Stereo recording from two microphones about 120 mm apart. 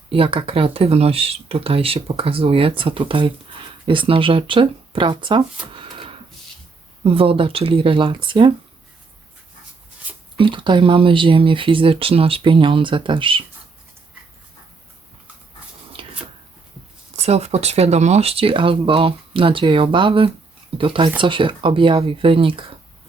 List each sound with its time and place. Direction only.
0.1 s speech: 50° right (ahead or behind)
5.7 s a sound: 45° right (ahead or behind)
7.0 s speech: 50° right (ahead or behind)
10.3 s speech: 40° right (ahead or behind)
16.0 s a sound: 45° right (ahead or behind)
17.2 s speech: 60° right (ahead or behind)